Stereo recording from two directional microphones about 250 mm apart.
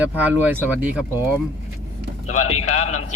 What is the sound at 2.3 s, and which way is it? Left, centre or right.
Speech, left.